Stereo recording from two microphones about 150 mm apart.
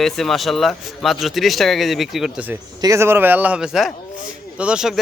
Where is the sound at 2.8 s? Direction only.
20° right (ahead or behind).